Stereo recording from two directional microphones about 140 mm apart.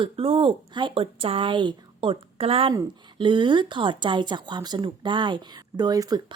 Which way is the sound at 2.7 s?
30° right (ahead or behind).